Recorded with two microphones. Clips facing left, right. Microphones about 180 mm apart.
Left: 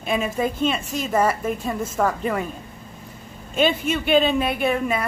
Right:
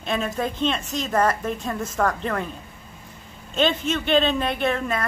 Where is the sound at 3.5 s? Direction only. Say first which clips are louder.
Left 1 dB; 10° left (ahead or behind).